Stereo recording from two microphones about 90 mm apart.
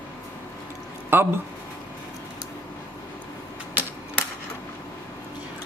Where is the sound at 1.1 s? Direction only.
25° right (ahead or behind).